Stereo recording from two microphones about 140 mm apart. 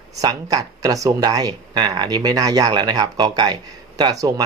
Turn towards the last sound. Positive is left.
turn(degrees=-25)  # may be behind; listen again after turning